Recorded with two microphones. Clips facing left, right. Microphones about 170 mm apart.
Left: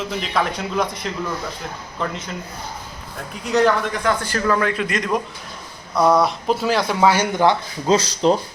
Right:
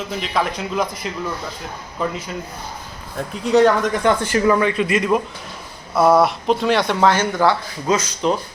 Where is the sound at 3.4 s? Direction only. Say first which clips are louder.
Right 4 dB; centre (ahead or behind).